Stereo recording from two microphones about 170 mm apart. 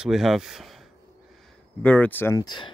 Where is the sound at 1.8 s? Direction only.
10° left (ahead or behind).